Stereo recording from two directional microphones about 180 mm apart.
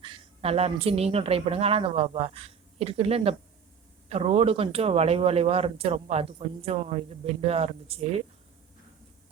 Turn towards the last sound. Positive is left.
turn(degrees=-35)  # may be behind; listen again after turning